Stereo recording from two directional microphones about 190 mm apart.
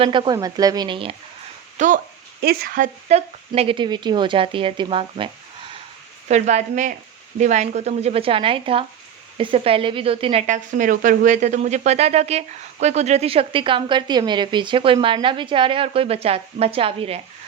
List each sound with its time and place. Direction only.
0.0 s speech: 25° right (ahead or behind)
1.8 s speech: 40° right (ahead or behind)
2.4 s speech: 55° right (ahead or behind); by 5.3 s 25° right (ahead or behind)
6.2 s speech: 35° right (ahead or behind)